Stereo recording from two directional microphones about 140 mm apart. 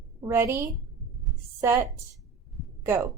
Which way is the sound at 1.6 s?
20° right (ahead or behind).